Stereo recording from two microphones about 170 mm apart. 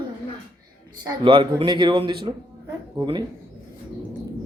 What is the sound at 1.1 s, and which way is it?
Speech, 30° right (ahead or behind).